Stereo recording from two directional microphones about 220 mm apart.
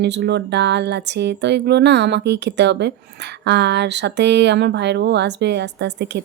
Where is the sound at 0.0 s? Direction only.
50° right (ahead or behind).